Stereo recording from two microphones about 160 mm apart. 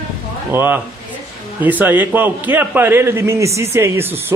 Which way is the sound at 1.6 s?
10° right (ahead or behind).